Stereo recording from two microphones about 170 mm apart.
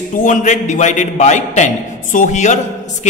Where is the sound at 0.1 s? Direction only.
50° left (ahead or behind).